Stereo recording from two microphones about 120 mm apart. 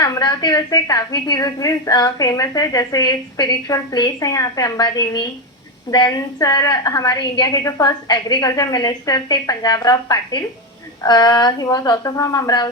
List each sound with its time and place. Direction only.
0.0 s a woman's voice: 35° left (ahead or behind)